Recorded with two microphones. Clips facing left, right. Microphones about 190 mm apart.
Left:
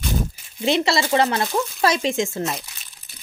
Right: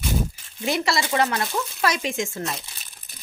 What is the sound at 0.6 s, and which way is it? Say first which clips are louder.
Speech: left 4 dB; 25° left (ahead or behind).